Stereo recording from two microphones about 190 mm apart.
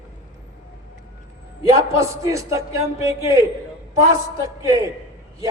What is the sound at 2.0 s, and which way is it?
A man's voice, 15° right (ahead or behind).